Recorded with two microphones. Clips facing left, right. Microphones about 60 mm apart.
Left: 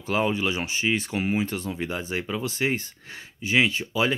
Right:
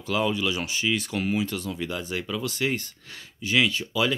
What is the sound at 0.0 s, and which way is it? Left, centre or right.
Speech, left.